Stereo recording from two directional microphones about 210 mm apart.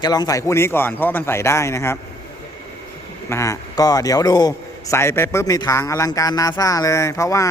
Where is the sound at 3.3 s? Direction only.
15° left (ahead or behind).